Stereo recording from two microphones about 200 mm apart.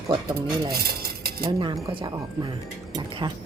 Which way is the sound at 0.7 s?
50° right (ahead or behind).